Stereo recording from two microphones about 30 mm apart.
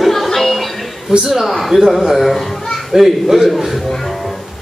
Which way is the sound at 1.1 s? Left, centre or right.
Right.